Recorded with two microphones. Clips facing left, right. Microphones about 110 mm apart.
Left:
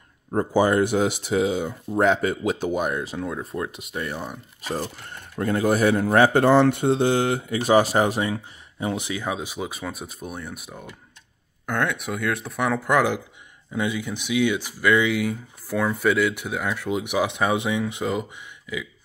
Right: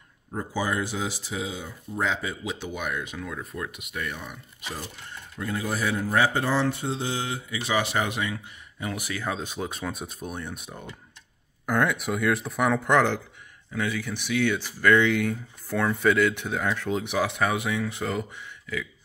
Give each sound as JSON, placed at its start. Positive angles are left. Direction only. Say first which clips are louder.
{"t": 0.3, "sound": "speech", "louder": "left 9 dB", "side_deg": 55}
{"t": 5.3, "sound": "speech", "louder": "left 9 dB", "side_deg": 60}
{"t": 13.7, "sound": "speech", "louder": "left 3 dB", "side_deg": 15}